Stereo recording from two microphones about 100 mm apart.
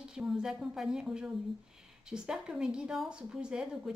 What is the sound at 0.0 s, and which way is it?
A woman's voice, 5° right (ahead or behind).